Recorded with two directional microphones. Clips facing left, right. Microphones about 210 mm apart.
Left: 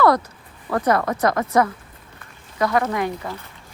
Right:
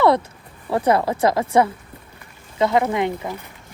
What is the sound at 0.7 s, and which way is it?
Speech, 30° right (ahead or behind).